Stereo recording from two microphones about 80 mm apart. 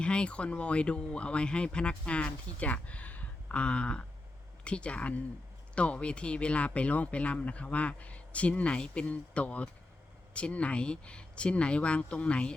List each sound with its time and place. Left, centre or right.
0.0 s speech: centre